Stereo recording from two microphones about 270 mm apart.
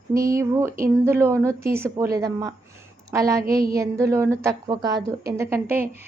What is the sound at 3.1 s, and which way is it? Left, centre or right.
A woman's voice, centre.